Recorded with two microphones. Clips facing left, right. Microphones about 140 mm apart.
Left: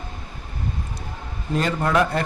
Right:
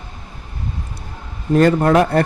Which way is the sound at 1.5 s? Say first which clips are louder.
Right 9 dB; 55° right (ahead or behind).